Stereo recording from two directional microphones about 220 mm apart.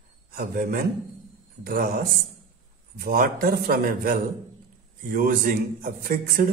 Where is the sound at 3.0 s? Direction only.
40° right (ahead or behind).